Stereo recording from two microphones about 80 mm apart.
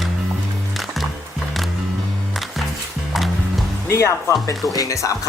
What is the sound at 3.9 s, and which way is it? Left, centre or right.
Speech, left.